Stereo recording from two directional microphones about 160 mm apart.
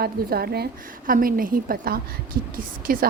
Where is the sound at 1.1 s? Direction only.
60° right (ahead or behind).